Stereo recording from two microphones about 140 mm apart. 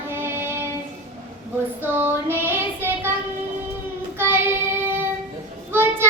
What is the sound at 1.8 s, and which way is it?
Child singing, 15° right (ahead or behind).